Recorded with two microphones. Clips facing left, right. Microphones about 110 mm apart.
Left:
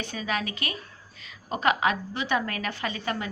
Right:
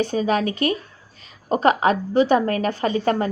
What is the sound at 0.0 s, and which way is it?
A woman's voice, 40° right (ahead or behind).